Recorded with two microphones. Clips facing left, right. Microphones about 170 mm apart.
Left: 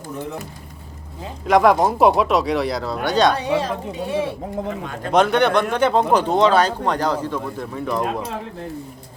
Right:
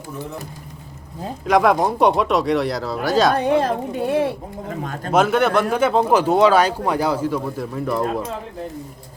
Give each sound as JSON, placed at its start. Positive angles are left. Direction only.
{"t": 1.5, "sound": "speech", "side_deg": 0}
{"t": 3.3, "sound": "a woman's voice", "side_deg": -55}
{"t": 4.8, "sound": "a man's voice", "side_deg": -40}
{"t": 5.1, "sound": "speech", "side_deg": -5}